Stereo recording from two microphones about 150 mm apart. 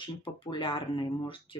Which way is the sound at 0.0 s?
35° left (ahead or behind).